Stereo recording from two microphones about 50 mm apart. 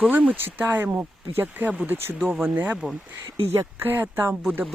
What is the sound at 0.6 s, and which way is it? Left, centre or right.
Speech, right.